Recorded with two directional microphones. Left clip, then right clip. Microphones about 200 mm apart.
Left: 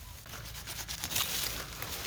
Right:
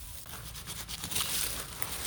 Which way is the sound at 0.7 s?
Centre (ahead or behind).